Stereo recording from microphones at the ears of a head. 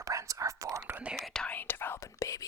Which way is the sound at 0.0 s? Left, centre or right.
Right.